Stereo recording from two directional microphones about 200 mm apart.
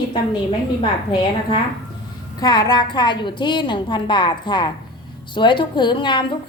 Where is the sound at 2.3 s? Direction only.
20° left (ahead or behind).